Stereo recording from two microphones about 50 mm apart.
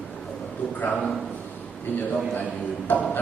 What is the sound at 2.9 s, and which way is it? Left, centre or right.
Speech, left.